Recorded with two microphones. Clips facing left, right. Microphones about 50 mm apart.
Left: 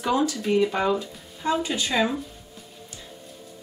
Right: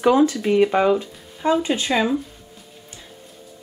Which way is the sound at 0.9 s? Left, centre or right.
Right.